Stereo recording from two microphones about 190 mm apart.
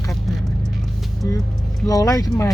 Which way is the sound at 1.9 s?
20° left (ahead or behind).